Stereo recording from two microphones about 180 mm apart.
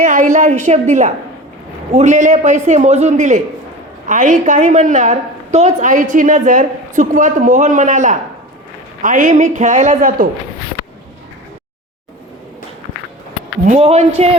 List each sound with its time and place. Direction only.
0.0 s a woman's voice: 45° right (ahead or behind)
13.7 s a man's voice: 35° right (ahead or behind)